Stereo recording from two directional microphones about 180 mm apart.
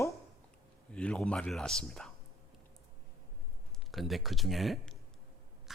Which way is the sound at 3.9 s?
Centre (ahead or behind).